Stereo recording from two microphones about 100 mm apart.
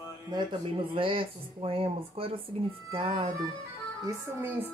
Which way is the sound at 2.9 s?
60° right (ahead or behind).